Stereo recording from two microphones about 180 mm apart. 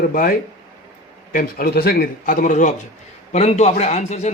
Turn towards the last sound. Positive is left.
turn(degrees=40)  # may be behind; listen again after turning